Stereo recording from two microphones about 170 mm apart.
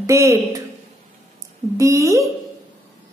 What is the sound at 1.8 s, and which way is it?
Speech, 20° right (ahead or behind).